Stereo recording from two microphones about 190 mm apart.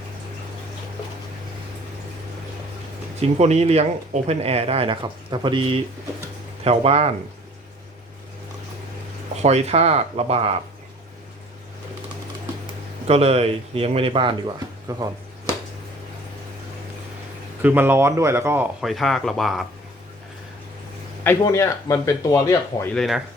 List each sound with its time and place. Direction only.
3.2 s speech: 35° right (ahead or behind)
9.4 s speech: 35° right (ahead or behind)
13.1 s speech: 30° right (ahead or behind)
17.6 s speech: 10° right (ahead or behind)
18.8 s speech: centre (ahead or behind)
21.2 s speech: 15° left (ahead or behind)
23.0 s speech: centre (ahead or behind)